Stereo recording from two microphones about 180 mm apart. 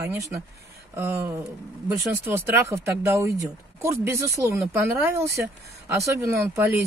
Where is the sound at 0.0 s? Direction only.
15° right (ahead or behind).